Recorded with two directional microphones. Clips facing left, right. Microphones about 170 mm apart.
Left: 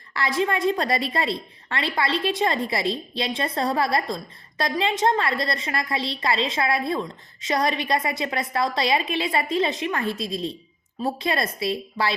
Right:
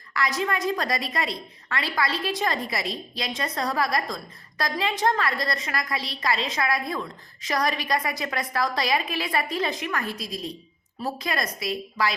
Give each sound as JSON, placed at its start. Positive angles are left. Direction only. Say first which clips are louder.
{"t": 0.1, "sound": "a woman's voice", "louder": "left 3 dB", "side_deg": 30}